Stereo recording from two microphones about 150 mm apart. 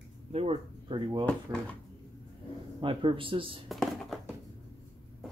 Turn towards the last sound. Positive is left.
turn(degrees=0)  # may be behind; listen again after turning